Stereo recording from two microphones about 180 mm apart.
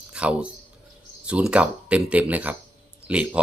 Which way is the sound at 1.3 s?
5° right (ahead or behind).